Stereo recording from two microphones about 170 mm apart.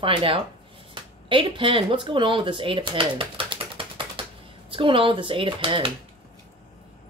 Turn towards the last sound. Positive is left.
turn(degrees=-30)  # may be behind; listen again after turning